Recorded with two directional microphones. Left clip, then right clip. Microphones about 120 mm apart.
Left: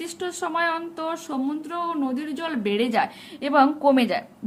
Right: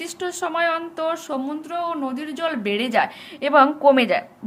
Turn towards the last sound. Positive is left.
turn(degrees=30)  # may be behind; listen again after turning